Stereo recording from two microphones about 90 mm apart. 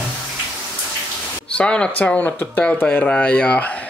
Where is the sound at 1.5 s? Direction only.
10° left (ahead or behind).